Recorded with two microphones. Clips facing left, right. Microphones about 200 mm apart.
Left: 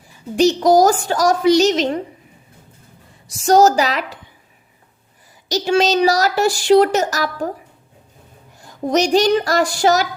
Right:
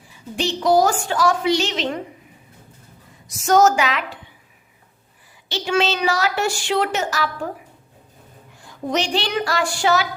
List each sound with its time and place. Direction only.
0.3 s a woman's voice: 40° left (ahead or behind)
3.2 s a woman's voice: 35° left (ahead or behind)
5.5 s a woman's voice: 40° left (ahead or behind)
8.5 s a woman's voice: 40° left (ahead or behind)